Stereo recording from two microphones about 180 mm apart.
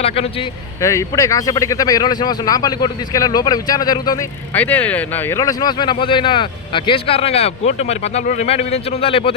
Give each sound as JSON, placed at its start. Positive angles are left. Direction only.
{"t": 0.0, "sound": "speech", "side_deg": 35}
{"t": 0.8, "sound": "speech", "side_deg": 15}
{"t": 4.5, "sound": "speech", "side_deg": 10}